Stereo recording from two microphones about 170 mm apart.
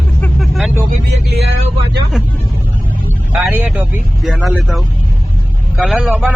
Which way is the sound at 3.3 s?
10° right (ahead or behind).